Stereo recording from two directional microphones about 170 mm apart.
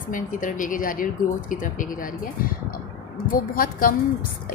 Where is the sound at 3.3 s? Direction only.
55° left (ahead or behind).